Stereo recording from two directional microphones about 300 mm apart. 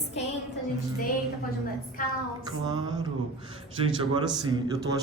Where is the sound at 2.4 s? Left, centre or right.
Centre.